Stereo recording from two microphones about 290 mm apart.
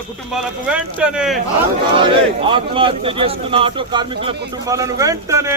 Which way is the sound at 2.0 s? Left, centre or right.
Centre.